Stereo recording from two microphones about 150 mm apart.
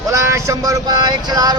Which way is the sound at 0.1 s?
20° right (ahead or behind).